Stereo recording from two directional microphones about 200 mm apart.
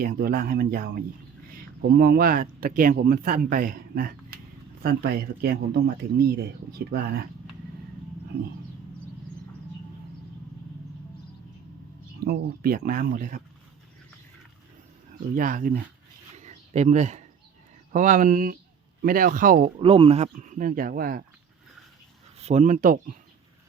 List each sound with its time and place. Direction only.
0.0 s speech: 45° right (ahead or behind)
12.2 s speech: 50° right (ahead or behind)
15.4 s speech: 45° right (ahead or behind)
16.3 s a sound: 35° right (ahead or behind)
17.9 s speech: 40° right (ahead or behind)
19.8 s speech: 30° right (ahead or behind); by 21.2 s 50° right (ahead or behind)
22.4 s speech: 35° right (ahead or behind)